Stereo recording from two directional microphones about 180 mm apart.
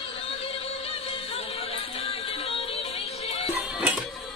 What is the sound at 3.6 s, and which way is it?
Music, 5° right (ahead or behind).